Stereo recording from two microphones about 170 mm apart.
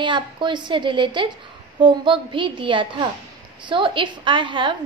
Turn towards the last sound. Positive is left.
turn(degrees=-30)  # may be behind; listen again after turning